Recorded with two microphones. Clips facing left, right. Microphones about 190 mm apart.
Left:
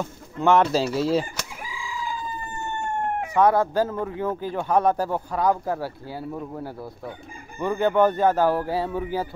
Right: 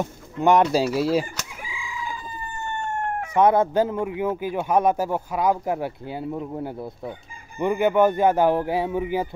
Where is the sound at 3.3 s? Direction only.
20° right (ahead or behind).